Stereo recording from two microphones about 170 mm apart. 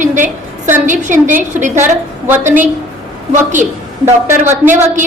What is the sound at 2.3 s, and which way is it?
Speech, 10° right (ahead or behind).